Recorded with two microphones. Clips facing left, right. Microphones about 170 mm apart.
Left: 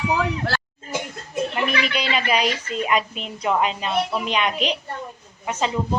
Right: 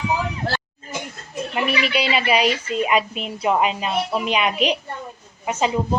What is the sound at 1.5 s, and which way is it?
Speech, 5° right (ahead or behind).